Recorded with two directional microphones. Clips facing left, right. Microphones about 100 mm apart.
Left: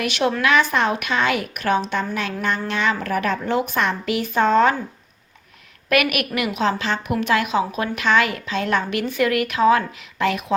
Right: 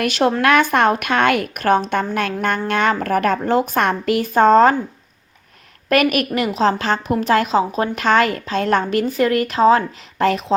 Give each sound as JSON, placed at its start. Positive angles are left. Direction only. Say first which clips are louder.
{"t": 0.0, "sound": "a woman's voice", "louder": "right 4 dB", "side_deg": -40}
{"t": 5.9, "sound": "a woman's voice", "louder": "right 4 dB", "side_deg": -35}